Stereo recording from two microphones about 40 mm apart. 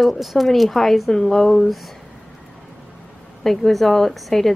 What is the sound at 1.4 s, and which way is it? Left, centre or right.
Speech, centre.